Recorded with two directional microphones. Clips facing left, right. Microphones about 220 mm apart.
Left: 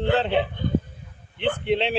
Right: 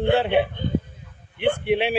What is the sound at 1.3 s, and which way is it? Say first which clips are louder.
Speech: right 2 dB; 10° right (ahead or behind).